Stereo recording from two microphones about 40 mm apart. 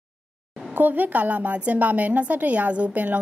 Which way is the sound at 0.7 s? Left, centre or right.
Right.